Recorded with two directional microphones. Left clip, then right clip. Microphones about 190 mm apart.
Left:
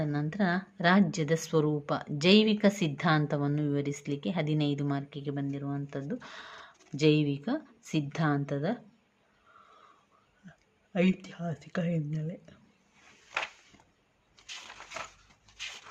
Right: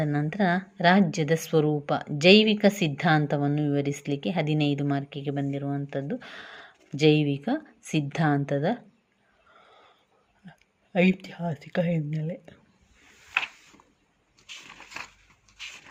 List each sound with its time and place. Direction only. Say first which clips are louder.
0.0 s a woman's voice: right 5 dB; 25° right (ahead or behind)
10.9 s a woman's voice: right 6 dB; 15° right (ahead or behind)